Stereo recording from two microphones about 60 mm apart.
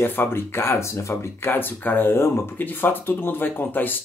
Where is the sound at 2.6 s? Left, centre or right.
Left.